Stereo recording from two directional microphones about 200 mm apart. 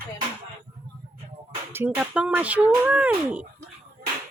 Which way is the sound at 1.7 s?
5° right (ahead or behind).